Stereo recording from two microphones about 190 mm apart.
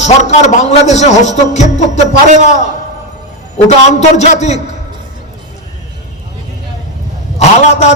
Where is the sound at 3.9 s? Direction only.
35° left (ahead or behind).